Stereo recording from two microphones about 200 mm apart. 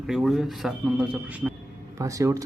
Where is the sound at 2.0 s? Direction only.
15° right (ahead or behind).